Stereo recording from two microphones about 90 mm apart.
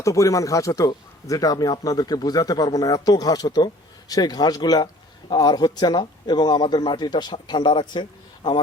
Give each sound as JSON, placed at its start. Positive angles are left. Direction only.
{"t": 0.0, "sound": "speech", "side_deg": 35}